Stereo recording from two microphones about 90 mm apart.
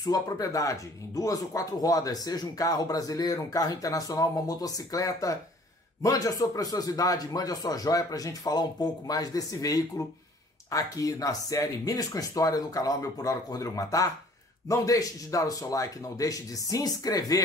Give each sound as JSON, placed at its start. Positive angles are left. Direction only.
{"t": 0.0, "sound": "speech", "side_deg": 45}